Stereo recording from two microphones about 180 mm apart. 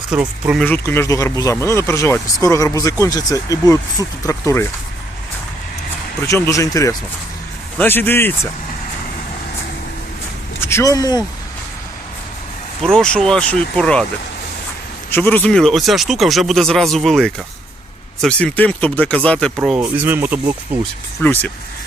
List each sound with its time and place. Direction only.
0.1 s speech: 5° right (ahead or behind)
0.6 s speech: 10° left (ahead or behind)
6.2 s speech: 15° left (ahead or behind)
10.6 s speech: 15° left (ahead or behind)
12.8 s speech: 5° left (ahead or behind)
15.1 s speech: 10° left (ahead or behind)
19.6 s speech: 5° right (ahead or behind)
21.2 s speech: 10° left (ahead or behind)